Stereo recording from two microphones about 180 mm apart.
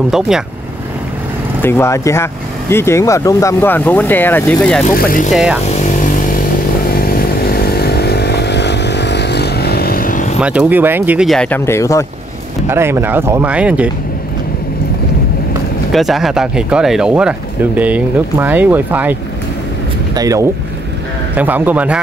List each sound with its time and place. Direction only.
1.6 s speech: 15° left (ahead or behind)
4.9 s speech: 50° left (ahead or behind)
5.3 s speech: 5° right (ahead or behind)
5.8 s motorcycle: 45° left (ahead or behind)
7.0 s vehicle: 55° left (ahead or behind)
10.4 s speech: 5° right (ahead or behind); by 12.1 s 15° left (ahead or behind)
12.6 s speech: 15° right (ahead or behind)
15.9 s speech: centre (ahead or behind)
20.2 s speech: 20° right (ahead or behind)